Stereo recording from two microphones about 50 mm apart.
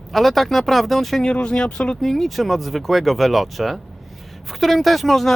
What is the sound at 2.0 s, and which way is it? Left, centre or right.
Speech, centre.